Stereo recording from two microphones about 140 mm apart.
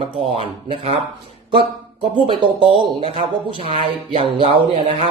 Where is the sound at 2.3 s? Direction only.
35° right (ahead or behind).